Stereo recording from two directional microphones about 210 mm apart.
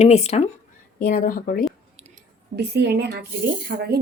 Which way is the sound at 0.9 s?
40° left (ahead or behind).